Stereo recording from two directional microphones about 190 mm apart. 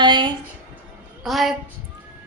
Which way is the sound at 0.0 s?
25° right (ahead or behind).